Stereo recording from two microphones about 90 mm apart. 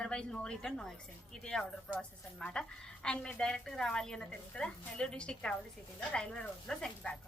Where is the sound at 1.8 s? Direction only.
15° left (ahead or behind).